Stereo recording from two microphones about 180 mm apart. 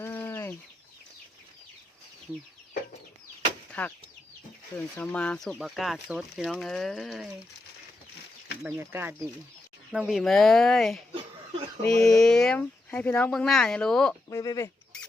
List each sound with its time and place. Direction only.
0.0 s chicken: 10° left (ahead or behind)
3.7 s a sound: 10° left (ahead or behind)
4.9 s speech: 5° left (ahead or behind)
8.8 s speech: 10° right (ahead or behind); by 14.2 s 5° left (ahead or behind)
14.3 s speech: 20° left (ahead or behind)